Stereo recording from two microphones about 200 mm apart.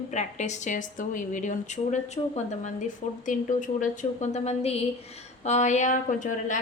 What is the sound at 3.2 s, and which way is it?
A woman's voice, 40° left (ahead or behind).